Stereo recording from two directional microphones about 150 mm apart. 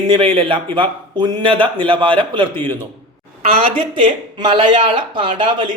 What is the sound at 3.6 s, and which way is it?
Speech, 35° right (ahead or behind).